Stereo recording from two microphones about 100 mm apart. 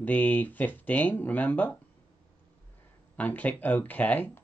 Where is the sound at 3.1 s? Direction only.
15° left (ahead or behind).